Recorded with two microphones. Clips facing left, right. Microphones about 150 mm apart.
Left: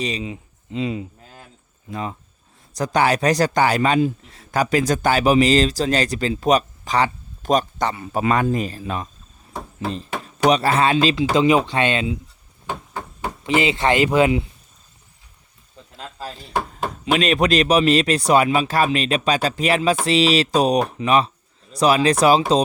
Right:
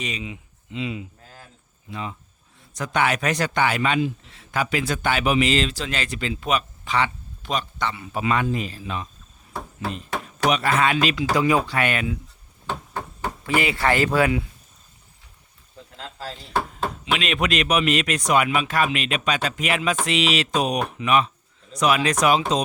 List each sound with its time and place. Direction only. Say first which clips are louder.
0.0 s a man's voice: left 6 dB; 35° left (ahead or behind)
10.5 s speech: left 3 dB; 35° left (ahead or behind)
13.4 s speech: left 3 dB; 20° left (ahead or behind)
16.0 s speech: left 2 dB; 15° left (ahead or behind)
17.1 s a man's voice: left 7 dB; 40° left (ahead or behind)